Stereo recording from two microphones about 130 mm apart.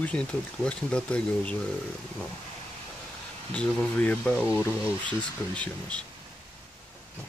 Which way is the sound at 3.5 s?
10° left (ahead or behind).